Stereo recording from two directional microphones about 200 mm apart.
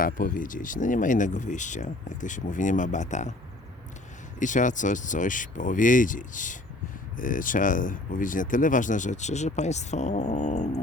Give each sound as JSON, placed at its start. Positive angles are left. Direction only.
{"t": 0.0, "sound": "speech", "side_deg": 45}
{"t": 4.4, "sound": "speech", "side_deg": 40}